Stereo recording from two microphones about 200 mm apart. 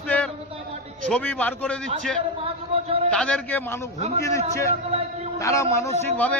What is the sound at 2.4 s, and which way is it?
Speech, 30° right (ahead or behind).